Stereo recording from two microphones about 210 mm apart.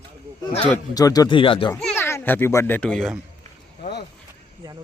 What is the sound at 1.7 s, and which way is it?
A child's voice, 10° left (ahead or behind).